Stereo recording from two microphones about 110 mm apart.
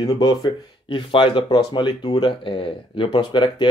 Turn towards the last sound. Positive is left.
turn(degrees=45)  # may be behind; listen again after turning